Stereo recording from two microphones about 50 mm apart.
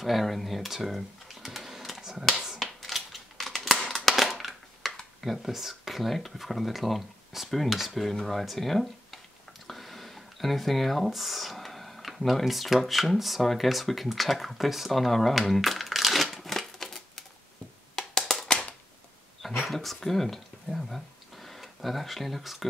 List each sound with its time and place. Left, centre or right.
0.0 s typing: centre
2.6 s a sound: centre
3.8 s crushing: centre
5.2 s speech: centre
18.2 s a sound: centre
19.6 s speech: centre